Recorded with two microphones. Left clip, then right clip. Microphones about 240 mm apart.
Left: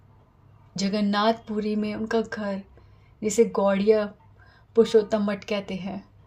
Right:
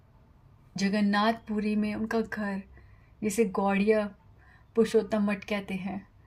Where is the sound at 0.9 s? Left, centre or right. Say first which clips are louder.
Left 4 dB; right.